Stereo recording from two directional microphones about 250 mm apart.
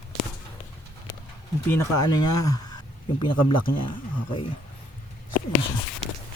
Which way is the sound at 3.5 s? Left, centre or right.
Centre.